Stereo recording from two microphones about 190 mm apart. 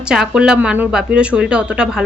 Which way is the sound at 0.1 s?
5° right (ahead or behind).